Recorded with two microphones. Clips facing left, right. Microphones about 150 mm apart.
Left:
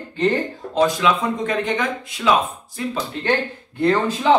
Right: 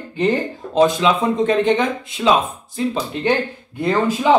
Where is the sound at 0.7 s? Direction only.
20° right (ahead or behind).